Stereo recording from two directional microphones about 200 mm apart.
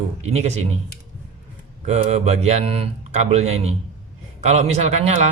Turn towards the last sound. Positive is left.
turn(degrees=-35)  # may be behind; listen again after turning